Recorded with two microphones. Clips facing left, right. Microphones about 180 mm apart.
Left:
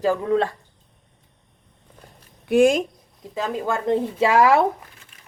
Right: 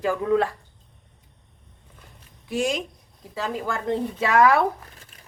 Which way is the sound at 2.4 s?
60° left (ahead or behind).